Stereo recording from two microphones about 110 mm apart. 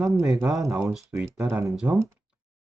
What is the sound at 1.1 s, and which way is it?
Speech, 20° right (ahead or behind).